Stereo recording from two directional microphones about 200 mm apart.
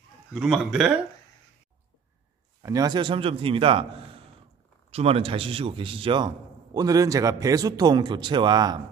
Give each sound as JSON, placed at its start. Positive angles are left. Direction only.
{"t": 0.3, "sound": "a man's voice", "side_deg": -5}
{"t": 2.6, "sound": "a man's voice", "side_deg": -20}